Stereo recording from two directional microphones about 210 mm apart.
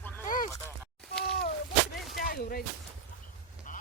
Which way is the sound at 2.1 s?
45° left (ahead or behind).